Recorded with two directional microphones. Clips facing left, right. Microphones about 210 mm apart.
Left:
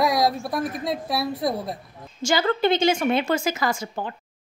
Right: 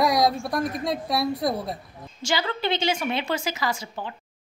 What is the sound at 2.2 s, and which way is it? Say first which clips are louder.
A woman's voice: left 6 dB; 45° left (ahead or behind).